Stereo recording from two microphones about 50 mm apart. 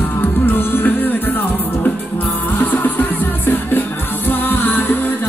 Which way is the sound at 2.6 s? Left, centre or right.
Left.